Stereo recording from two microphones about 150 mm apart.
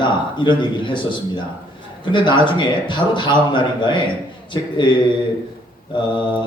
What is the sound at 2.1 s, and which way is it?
A man's voice, 30° left (ahead or behind).